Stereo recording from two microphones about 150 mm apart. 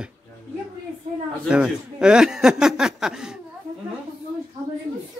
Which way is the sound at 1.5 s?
5° right (ahead or behind).